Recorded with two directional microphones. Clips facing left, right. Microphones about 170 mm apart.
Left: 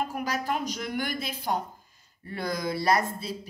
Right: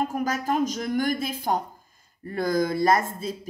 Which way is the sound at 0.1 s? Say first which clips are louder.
Right 4 dB; 45° right (ahead or behind).